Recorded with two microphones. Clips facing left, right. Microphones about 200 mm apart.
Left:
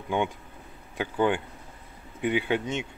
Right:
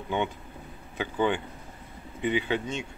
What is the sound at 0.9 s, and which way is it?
Speech, 10° left (ahead or behind).